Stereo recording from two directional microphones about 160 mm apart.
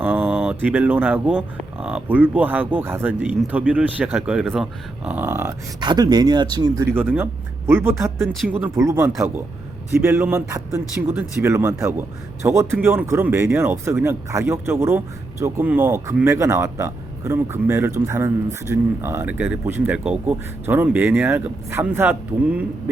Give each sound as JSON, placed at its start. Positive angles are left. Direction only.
{"t": 0.0, "sound": "a sound", "side_deg": -10}
{"t": 1.8, "sound": "speech", "side_deg": -5}
{"t": 5.8, "sound": "speech", "side_deg": -25}
{"t": 6.9, "sound": "speech", "side_deg": -10}
{"t": 10.2, "sound": "speech", "side_deg": -15}